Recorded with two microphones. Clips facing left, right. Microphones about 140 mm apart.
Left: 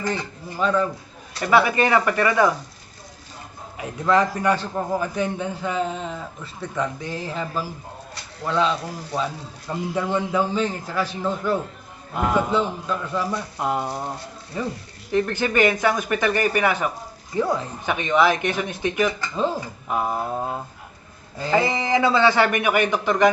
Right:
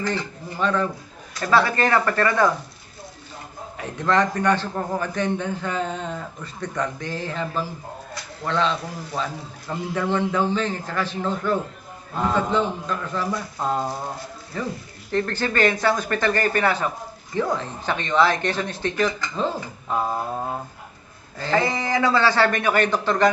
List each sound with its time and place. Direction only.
0.6 s a man's voice: 5° left (ahead or behind)
3.8 s a man's voice: 10° left (ahead or behind)
21.3 s a man's voice: 15° left (ahead or behind)